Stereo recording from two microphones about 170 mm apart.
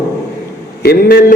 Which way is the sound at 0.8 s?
65° left (ahead or behind).